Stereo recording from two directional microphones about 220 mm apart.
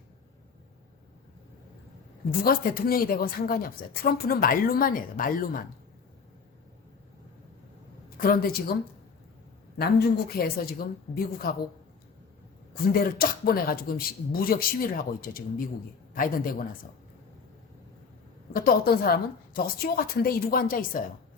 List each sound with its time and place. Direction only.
2.4 s a woman's voice: 40° left (ahead or behind)
8.2 s a woman's voice: 40° left (ahead or behind)
9.7 s speech: 45° left (ahead or behind)
12.7 s a woman's voice: 40° left (ahead or behind)
18.5 s a woman's voice: 40° left (ahead or behind)